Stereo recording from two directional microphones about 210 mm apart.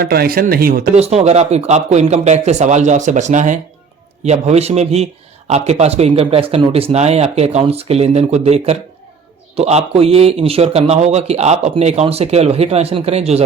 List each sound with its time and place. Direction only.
0.0 s speech: 45° right (ahead or behind)
0.9 s a man's voice: 30° right (ahead or behind)